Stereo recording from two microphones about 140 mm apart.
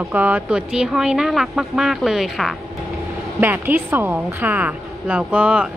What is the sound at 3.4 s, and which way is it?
A woman's voice, 15° right (ahead or behind).